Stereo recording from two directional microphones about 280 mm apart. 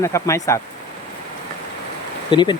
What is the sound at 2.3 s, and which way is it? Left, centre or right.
Speech, centre.